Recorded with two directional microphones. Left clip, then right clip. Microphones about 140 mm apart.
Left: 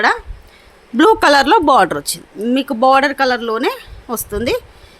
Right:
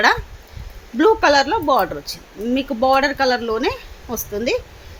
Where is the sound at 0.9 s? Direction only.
65° left (ahead or behind).